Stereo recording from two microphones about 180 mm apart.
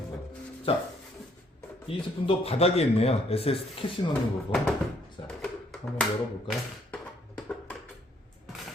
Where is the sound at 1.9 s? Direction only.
30° left (ahead or behind).